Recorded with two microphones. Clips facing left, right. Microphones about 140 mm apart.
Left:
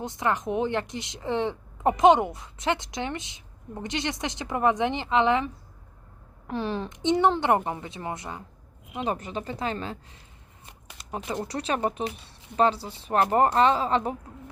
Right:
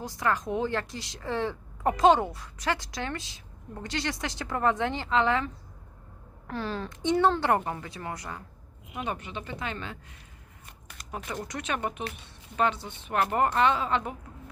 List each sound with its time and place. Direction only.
0.0 s speech: 20° left (ahead or behind)
6.5 s speech: 20° left (ahead or behind)
9.0 s speech: 40° left (ahead or behind)
10.7 s shuffling cards: 25° left (ahead or behind)
11.3 s speech: 30° left (ahead or behind)